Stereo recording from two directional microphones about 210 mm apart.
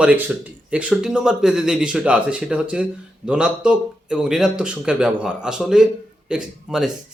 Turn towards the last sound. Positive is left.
turn(degrees=-5)  # may be behind; listen again after turning